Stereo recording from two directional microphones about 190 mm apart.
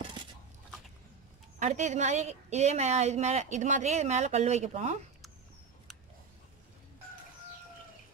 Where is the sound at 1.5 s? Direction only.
40° right (ahead or behind).